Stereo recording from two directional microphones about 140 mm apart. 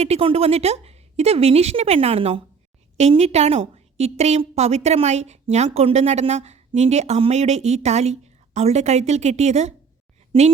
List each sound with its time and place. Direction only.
0.0 s a woman's voice: 45° right (ahead or behind)